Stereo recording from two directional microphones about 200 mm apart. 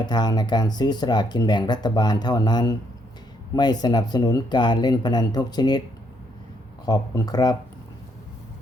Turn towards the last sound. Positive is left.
turn(degrees=20)  # may be behind; listen again after turning